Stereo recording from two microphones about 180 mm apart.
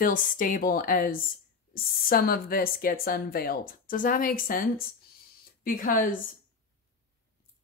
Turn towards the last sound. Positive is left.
turn(degrees=50)  # may be behind; listen again after turning